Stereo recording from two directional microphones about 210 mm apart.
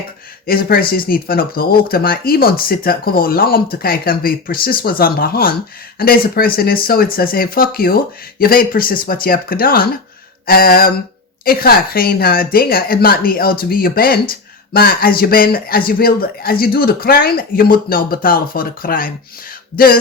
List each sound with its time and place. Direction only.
0.4 s speech: 45° left (ahead or behind)